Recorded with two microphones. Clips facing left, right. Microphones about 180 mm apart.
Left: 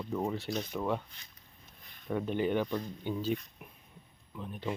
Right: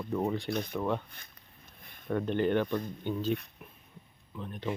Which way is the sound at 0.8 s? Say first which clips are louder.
Even; 5° left (ahead or behind).